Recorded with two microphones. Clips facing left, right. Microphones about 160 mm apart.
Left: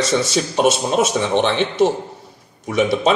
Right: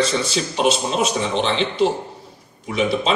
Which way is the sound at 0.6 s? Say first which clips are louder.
Left 3 dB; 50° left (ahead or behind).